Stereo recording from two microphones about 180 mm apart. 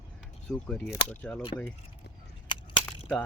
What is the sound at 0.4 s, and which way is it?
Speech, 5° left (ahead or behind).